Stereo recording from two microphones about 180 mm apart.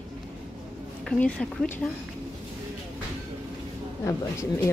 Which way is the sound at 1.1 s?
5° left (ahead or behind).